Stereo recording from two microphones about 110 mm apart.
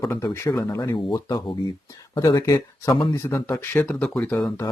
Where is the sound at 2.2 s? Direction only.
35° left (ahead or behind); by 4.1 s 10° left (ahead or behind).